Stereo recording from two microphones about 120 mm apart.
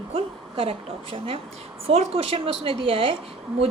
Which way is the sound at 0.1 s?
50° right (ahead or behind).